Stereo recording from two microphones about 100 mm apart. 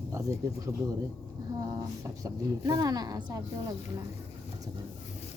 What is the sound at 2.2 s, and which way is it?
A woman's voice, 40° right (ahead or behind).